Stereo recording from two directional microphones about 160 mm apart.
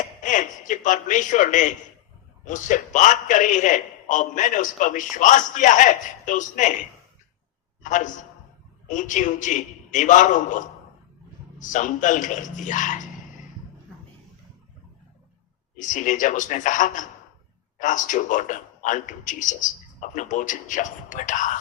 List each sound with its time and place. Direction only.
0.2 s a man's voice: 50° left (ahead or behind)
7.8 s a man's voice: 50° left (ahead or behind)
15.8 s a man's voice: 50° left (ahead or behind)